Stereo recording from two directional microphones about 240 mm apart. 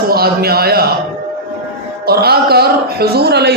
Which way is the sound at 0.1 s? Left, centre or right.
Right.